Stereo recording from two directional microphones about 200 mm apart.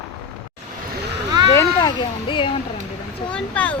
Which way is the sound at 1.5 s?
20° left (ahead or behind).